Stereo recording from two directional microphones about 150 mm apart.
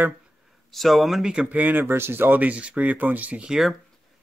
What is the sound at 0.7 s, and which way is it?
Speech, centre (ahead or behind).